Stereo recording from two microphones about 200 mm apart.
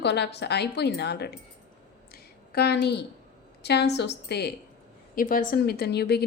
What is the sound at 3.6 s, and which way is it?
Speech, 55° left (ahead or behind).